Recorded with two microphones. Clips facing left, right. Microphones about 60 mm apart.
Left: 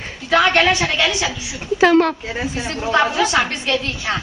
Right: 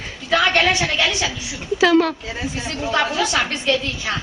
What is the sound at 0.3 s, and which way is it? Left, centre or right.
A woman's voice, left.